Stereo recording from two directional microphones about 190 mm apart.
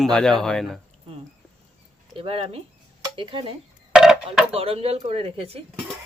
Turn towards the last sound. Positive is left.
turn(degrees=-30)  # may be behind; listen again after turning